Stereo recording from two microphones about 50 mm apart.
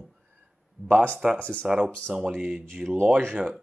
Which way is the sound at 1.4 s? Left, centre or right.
Left.